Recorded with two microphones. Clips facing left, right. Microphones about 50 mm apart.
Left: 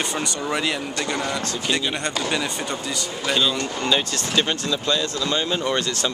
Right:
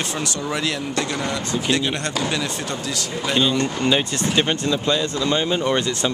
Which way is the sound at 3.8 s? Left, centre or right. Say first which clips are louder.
Right 3 dB; centre.